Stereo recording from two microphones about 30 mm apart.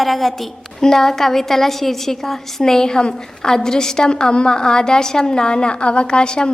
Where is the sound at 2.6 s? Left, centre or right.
Left.